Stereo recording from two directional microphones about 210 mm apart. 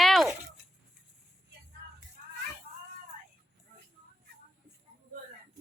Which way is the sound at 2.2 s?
45° right (ahead or behind).